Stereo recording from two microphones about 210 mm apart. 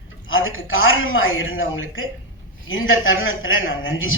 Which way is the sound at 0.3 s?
70° left (ahead or behind).